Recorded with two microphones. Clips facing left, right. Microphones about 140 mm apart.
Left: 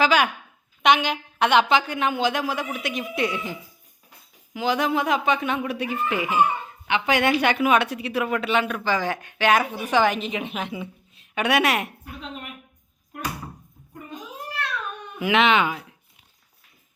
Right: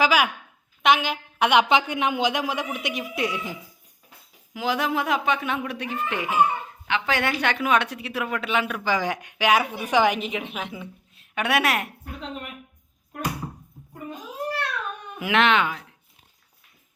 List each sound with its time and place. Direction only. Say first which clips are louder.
0.0 s a woman's voice: left 1 dB; 10° right (ahead or behind)
4.5 s speech: left 2 dB; centre (ahead or behind)
6.8 s a woman's voice: left 4 dB; 15° left (ahead or behind)
7.5 s speech: left 3 dB; 5° left (ahead or behind); by 10.3 s 10° right (ahead or behind)
10.3 s a woman's voice: left 2 dB; centre (ahead or behind)
15.2 s speech: left 1 dB; centre (ahead or behind)